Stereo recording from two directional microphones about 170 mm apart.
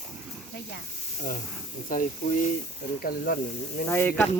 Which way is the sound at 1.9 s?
50° left (ahead or behind).